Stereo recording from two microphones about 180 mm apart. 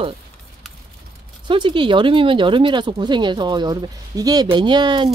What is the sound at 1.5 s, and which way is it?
Speech, 25° right (ahead or behind).